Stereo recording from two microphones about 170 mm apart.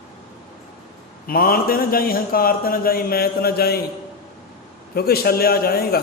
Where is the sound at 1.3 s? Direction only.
60° left (ahead or behind).